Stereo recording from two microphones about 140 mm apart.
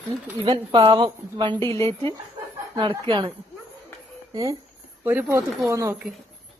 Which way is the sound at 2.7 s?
35° right (ahead or behind).